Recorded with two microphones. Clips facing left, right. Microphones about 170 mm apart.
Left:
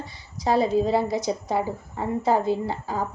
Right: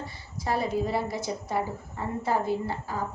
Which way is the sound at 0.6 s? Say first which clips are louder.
Left 7 dB; 25° left (ahead or behind).